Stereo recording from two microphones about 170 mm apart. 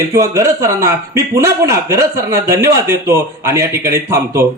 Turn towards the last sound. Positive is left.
turn(degrees=-15)  # may be behind; listen again after turning